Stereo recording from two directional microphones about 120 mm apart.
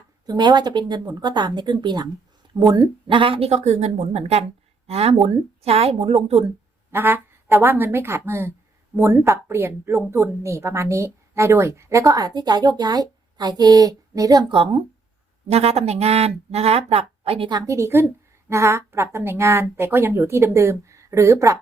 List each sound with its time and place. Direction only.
0.3 s speech: 35° right (ahead or behind); by 6.4 s 60° right (ahead or behind)
6.9 s a woman's voice: 20° right (ahead or behind)
14.5 s speech: 45° right (ahead or behind)
15.4 s speech: 60° right (ahead or behind)
17.7 s a woman's voice: 25° right (ahead or behind)